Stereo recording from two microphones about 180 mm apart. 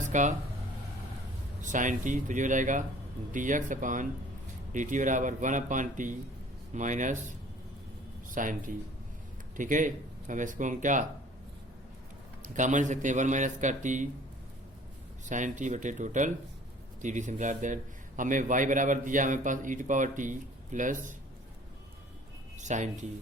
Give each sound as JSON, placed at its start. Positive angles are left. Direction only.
{"t": 0.1, "sound": "speech", "side_deg": -45}
{"t": 1.6, "sound": "a man's voice", "side_deg": -45}
{"t": 12.5, "sound": "a man's voice", "side_deg": -45}
{"t": 15.3, "sound": "a man's voice", "side_deg": -45}
{"t": 22.5, "sound": "speech", "side_deg": -40}